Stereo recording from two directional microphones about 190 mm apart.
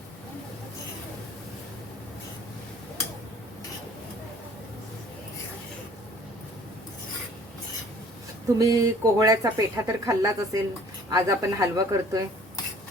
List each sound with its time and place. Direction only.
8.5 s speech: 15° right (ahead or behind)